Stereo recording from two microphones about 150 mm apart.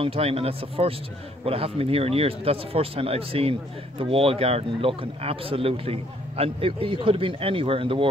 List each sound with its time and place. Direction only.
0.0 s speech: 40° right (ahead or behind)